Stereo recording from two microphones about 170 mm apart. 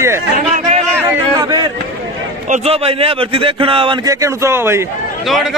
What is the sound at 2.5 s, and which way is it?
A man's voice, 35° right (ahead or behind).